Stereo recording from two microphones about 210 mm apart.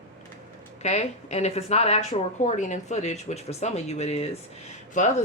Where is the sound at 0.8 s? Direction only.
30° left (ahead or behind).